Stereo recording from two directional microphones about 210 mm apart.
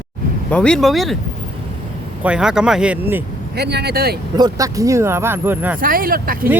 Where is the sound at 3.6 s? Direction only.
50° right (ahead or behind).